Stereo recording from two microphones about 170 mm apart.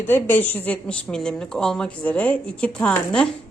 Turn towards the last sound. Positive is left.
turn(degrees=5)  # may be behind; listen again after turning